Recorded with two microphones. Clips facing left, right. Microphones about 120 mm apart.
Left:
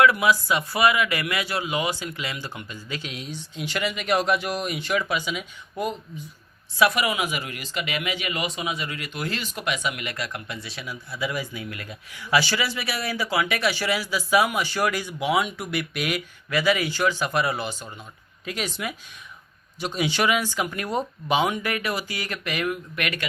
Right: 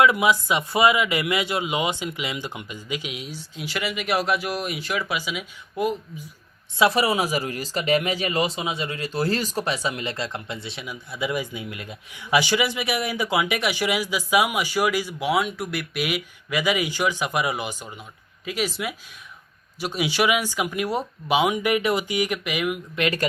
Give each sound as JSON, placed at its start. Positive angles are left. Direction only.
{"t": 0.0, "sound": "speech", "side_deg": -20}
{"t": 6.7, "sound": "speech", "side_deg": -30}
{"t": 23.0, "sound": "speech", "side_deg": -30}